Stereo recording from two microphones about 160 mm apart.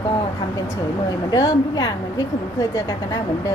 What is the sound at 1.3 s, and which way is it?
A woman's voice, 25° left (ahead or behind).